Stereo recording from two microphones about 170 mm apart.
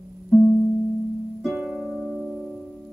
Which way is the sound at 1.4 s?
Centre (ahead or behind).